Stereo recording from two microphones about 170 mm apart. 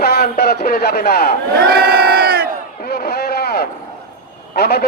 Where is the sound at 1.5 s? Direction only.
70° right (ahead or behind).